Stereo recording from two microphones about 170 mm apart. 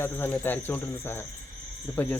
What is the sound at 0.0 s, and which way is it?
Speech, 15° left (ahead or behind).